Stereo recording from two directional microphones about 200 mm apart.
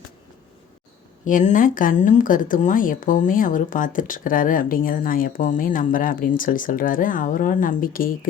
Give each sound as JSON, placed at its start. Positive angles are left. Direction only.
{"t": 1.2, "sound": "speech", "side_deg": 40}